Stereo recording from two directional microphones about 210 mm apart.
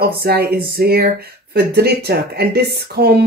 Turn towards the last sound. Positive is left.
turn(degrees=-50)  # may be behind; listen again after turning